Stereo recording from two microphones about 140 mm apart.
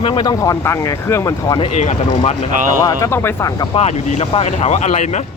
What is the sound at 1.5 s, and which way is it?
Speech, 40° left (ahead or behind).